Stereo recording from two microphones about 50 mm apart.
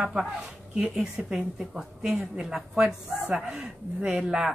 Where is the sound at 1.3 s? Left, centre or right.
Centre.